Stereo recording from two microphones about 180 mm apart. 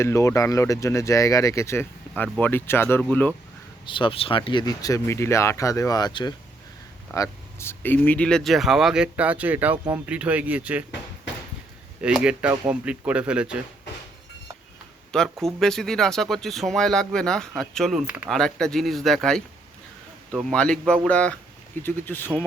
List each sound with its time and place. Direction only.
0.0 s speech: 15° left (ahead or behind)
3.8 s speech: 30° left (ahead or behind); by 10.8 s 10° right (ahead or behind)
12.0 s speech: 5° right (ahead or behind)
15.1 s speech: 5° left (ahead or behind)
18.3 s speech: 5° left (ahead or behind)